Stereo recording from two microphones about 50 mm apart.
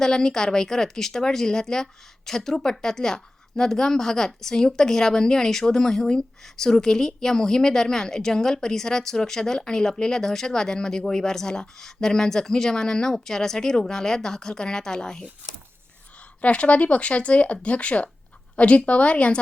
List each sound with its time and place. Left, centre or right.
0.0 s speech: centre
16.4 s speech: left